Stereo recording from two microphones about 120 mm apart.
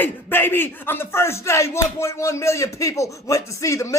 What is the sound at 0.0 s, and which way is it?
Speech, 15° left (ahead or behind).